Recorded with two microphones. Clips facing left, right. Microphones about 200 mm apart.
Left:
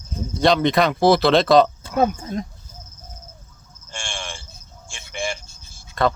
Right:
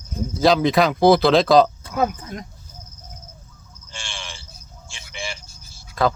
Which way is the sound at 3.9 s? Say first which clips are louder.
Left 4 dB; 50° left (ahead or behind).